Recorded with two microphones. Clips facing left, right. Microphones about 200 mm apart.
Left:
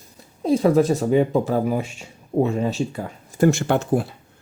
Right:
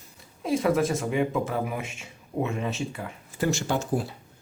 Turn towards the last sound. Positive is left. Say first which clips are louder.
# left 6 dB
turn(degrees=60)  # may be behind; listen again after turning